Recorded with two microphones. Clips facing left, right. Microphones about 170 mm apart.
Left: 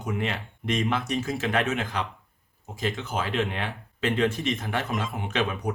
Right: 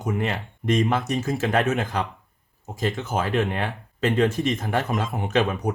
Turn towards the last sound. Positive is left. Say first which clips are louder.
# right 5 dB
turn(degrees=-40)  # may be behind; listen again after turning